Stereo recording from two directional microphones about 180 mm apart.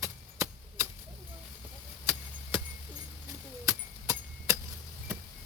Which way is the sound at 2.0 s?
15° right (ahead or behind).